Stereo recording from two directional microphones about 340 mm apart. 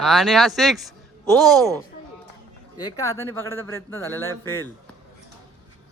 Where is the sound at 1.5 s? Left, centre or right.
Centre.